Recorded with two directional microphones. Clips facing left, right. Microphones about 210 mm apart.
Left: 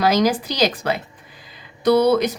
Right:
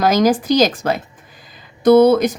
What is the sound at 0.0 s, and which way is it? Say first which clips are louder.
Speech: right 3 dB; 45° right (ahead or behind).